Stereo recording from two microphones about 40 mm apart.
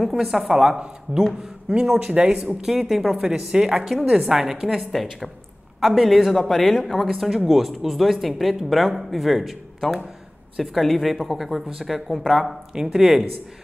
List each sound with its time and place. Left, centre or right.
0.0 s speech: centre
1.7 s speech: right
2.6 s a woman's voice: centre
5.8 s a woman's voice: centre